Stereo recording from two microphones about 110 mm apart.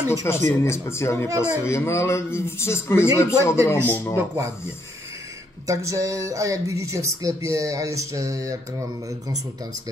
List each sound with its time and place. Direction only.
0.1 s a man's voice: 25° left (ahead or behind)
5.7 s speech: 30° right (ahead or behind)